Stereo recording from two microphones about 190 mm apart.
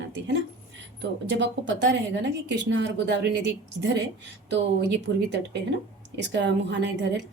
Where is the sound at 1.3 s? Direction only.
65° right (ahead or behind).